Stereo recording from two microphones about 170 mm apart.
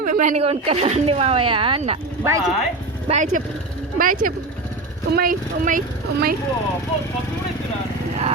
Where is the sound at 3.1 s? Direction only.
45° right (ahead or behind).